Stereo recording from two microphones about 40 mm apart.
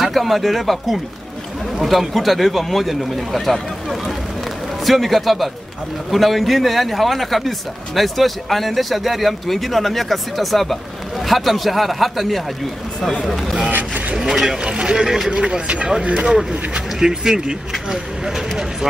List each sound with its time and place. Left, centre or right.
0.0 s speech: centre
4.8 s speech: centre
13.7 s speech: right
14.1 s speech: centre
14.6 s speech: centre
15.6 s speech: right; by 18.4 s centre